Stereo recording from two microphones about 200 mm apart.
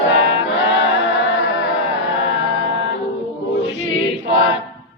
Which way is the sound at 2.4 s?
70° left (ahead or behind).